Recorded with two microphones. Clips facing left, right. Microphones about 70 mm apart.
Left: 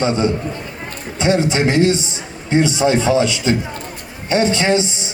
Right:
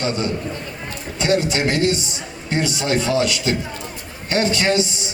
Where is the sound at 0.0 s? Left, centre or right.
Left.